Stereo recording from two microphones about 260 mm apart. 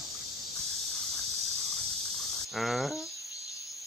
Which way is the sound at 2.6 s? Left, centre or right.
Centre.